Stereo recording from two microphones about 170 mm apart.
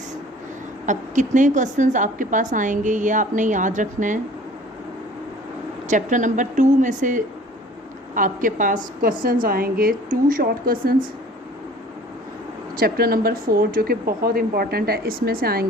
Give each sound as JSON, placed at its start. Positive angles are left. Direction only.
{"t": 0.9, "sound": "a woman's voice", "side_deg": -45}
{"t": 5.9, "sound": "a woman's voice", "side_deg": -50}
{"t": 12.7, "sound": "speech", "side_deg": -60}